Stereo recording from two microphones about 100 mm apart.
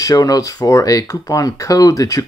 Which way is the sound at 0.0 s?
35° left (ahead or behind).